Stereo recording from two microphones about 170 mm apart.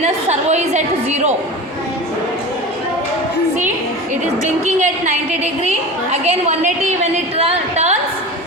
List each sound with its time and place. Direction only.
0.0 s a woman's voice: 40° right (ahead or behind)
4.4 s a woman's voice: 45° right (ahead or behind)